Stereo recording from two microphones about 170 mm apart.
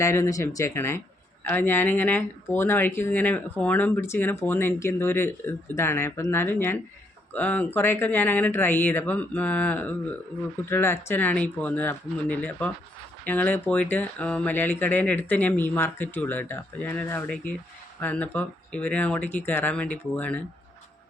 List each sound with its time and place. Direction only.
0.0 s speech: 15° left (ahead or behind)